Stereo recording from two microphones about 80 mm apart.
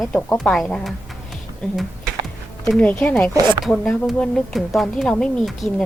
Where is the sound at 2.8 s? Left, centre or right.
Centre.